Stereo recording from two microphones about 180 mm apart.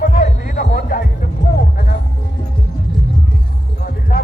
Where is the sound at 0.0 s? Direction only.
50° left (ahead or behind).